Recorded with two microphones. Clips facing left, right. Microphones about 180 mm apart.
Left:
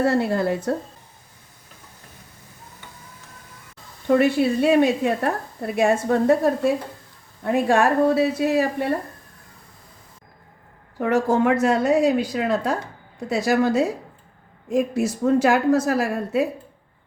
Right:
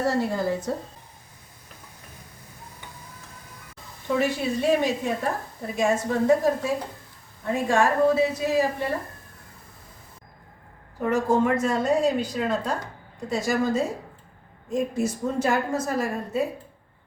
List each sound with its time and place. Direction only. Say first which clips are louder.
0.0 s speech: left 4 dB; 65° left (ahead or behind)
4.1 s speech: left 7 dB; 60° left (ahead or behind)
11.0 s speech: left 3 dB; 70° left (ahead or behind)